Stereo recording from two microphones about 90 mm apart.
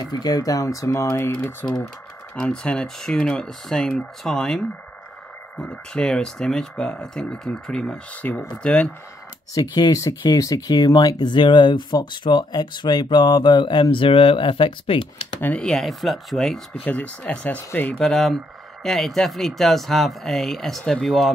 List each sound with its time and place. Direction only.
0.0 s speech: 45° left (ahead or behind); by 1.9 s 20° left (ahead or behind)
2.3 s speech: 10° left (ahead or behind)
9.5 s speech: 40° left (ahead or behind); by 15.0 s 80° left
15.4 s speech: 15° left (ahead or behind)
15.7 s speech: centre (ahead or behind)
16.8 s speech: 15° left (ahead or behind)
17.9 s speech: 5° left (ahead or behind)